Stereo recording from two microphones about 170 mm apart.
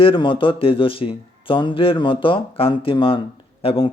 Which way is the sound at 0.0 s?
30° left (ahead or behind).